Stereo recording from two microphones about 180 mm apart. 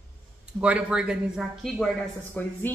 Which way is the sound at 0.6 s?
5° right (ahead or behind).